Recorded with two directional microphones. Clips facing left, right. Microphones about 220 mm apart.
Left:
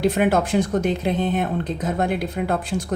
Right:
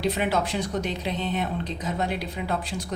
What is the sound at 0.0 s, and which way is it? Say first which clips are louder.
Speech: left 6 dB; 50° left (ahead or behind).